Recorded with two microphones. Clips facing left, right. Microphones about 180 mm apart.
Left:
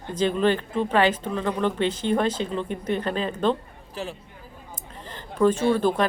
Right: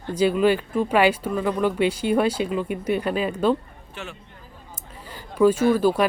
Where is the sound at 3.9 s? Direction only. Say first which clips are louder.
Left 4 dB; 35° left (ahead or behind).